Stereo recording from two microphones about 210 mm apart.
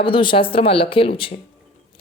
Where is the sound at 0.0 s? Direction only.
25° left (ahead or behind).